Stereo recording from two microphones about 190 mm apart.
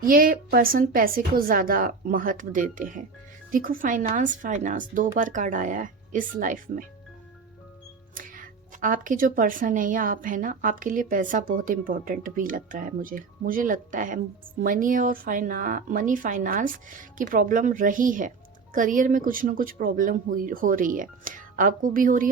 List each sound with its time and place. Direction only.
0.0 s a woman's voice: 50° right (ahead or behind)
8.1 s a woman's voice: 45° right (ahead or behind)